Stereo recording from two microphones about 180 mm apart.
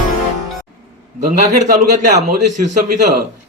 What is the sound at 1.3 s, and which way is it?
Speech, 45° right (ahead or behind).